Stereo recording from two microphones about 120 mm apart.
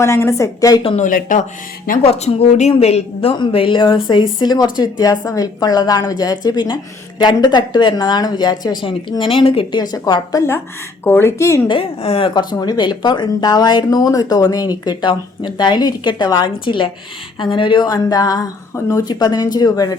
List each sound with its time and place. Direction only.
0.0 s speech: 25° left (ahead or behind)
0.9 s speech: 90° left
2.0 s a woman's voice: 60° left (ahead or behind)
9.8 s a woman's voice: 35° left (ahead or behind)
11.0 s speech: 20° left (ahead or behind)
11.7 s a woman's voice: 55° left (ahead or behind)
12.3 s a woman's voice: 35° left (ahead or behind)